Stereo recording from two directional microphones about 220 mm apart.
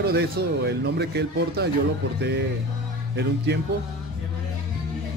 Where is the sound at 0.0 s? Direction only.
45° right (ahead or behind).